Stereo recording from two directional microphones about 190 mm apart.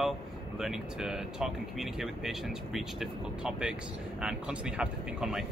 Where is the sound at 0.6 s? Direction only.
Centre (ahead or behind).